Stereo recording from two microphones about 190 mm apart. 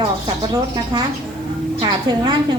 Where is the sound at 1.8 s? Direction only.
20° right (ahead or behind).